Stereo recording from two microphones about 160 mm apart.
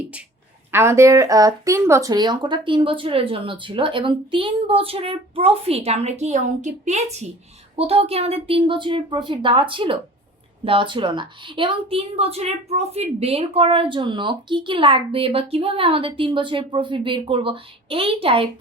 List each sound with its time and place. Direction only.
0.7 s a woman's voice: 15° right (ahead or behind); by 18.4 s 35° right (ahead or behind)